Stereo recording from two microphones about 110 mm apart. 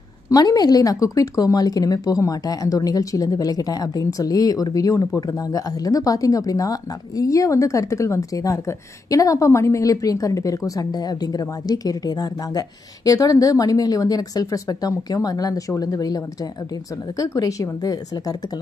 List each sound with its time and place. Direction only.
0.3 s a woman's voice: 35° left (ahead or behind)
17.2 s a woman's voice: 30° left (ahead or behind)